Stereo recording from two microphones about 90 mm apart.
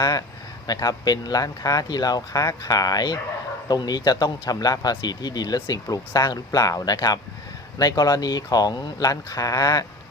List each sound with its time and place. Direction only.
0.0 s speech: 45° left (ahead or behind)